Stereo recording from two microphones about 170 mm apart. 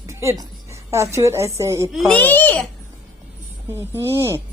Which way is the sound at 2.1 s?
10° left (ahead or behind).